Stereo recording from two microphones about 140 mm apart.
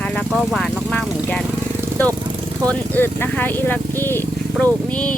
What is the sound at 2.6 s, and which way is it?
A woman's voice, 10° left (ahead or behind).